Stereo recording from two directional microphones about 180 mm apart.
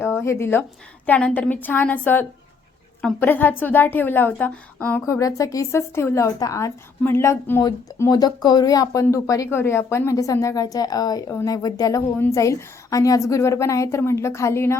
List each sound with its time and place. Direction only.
0.0 s a woman's voice: 10° left (ahead or behind)